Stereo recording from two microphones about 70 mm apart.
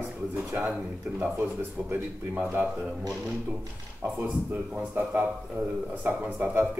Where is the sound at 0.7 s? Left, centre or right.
Centre.